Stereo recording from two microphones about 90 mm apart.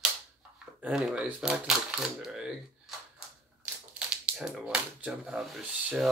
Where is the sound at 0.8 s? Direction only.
10° right (ahead or behind).